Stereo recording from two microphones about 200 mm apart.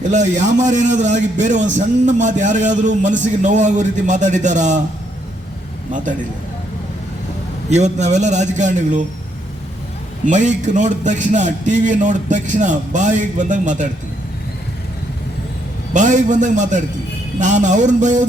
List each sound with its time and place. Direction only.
0.1 s a man's voice: 35° right (ahead or behind)
5.9 s a man's voice: 40° right (ahead or behind)
7.7 s a man's voice: 35° right (ahead or behind)
10.2 s a man's voice: 40° right (ahead or behind)
15.9 s a man's voice: 40° right (ahead or behind)